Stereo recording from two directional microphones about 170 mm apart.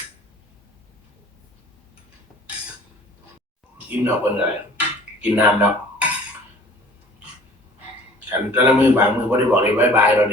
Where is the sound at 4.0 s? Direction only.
10° right (ahead or behind).